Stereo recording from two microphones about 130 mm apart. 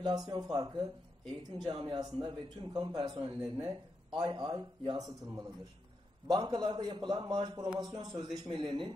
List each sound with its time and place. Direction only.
0.0 s a man's voice: 30° right (ahead or behind)